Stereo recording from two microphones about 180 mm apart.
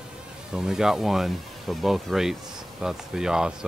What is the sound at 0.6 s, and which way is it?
Speech, 5° right (ahead or behind).